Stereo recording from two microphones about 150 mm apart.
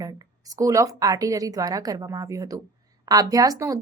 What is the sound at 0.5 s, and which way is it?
Speech, 20° right (ahead or behind).